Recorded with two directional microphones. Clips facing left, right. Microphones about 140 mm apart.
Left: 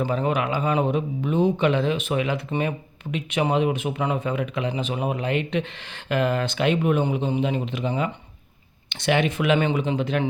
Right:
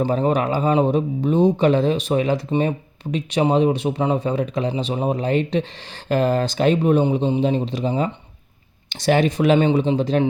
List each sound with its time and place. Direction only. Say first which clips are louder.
0.0 s speech: right 4 dB; 35° right (ahead or behind)